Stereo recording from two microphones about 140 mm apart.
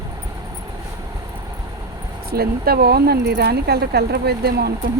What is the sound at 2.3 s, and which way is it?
Speech, 90° right.